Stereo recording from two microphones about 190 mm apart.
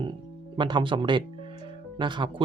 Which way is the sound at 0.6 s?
25° right (ahead or behind).